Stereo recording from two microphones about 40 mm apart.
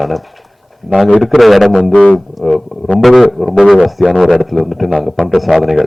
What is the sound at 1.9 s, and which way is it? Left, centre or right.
Speech, left.